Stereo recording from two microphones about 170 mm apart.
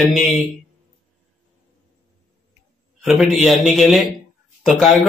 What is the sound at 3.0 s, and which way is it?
A man's voice, centre (ahead or behind).